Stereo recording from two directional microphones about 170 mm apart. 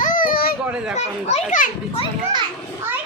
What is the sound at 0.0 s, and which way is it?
Baby cry, 50° left (ahead or behind).